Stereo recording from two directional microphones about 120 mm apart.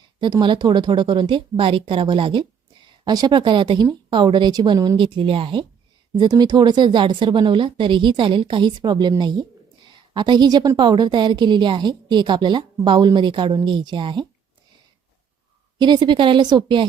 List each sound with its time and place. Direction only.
0.2 s a woman's voice: 40° right (ahead or behind)
3.0 s a woman's voice: 35° right (ahead or behind)
4.9 s a woman's voice: 45° right (ahead or behind)
15.8 s a woman's voice: 40° right (ahead or behind)